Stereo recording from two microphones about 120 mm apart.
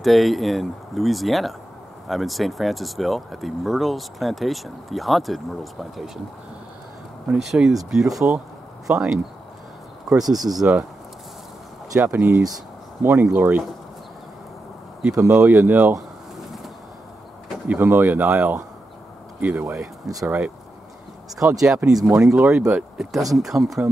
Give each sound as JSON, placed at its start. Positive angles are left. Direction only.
{"t": 0.0, "sound": "speech", "side_deg": 0}
{"t": 7.2, "sound": "speech", "side_deg": -5}
{"t": 10.2, "sound": "speech", "side_deg": -30}
{"t": 10.5, "sound": "speech", "side_deg": -5}
{"t": 12.0, "sound": "speech", "side_deg": -15}
{"t": 15.1, "sound": "speech", "side_deg": -15}
{"t": 17.6, "sound": "speech", "side_deg": -15}
{"t": 20.2, "sound": "speech", "side_deg": -10}
{"t": 21.5, "sound": "speech", "side_deg": -5}